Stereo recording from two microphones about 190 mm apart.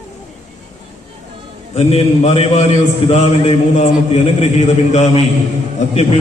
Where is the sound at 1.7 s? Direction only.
35° left (ahead or behind).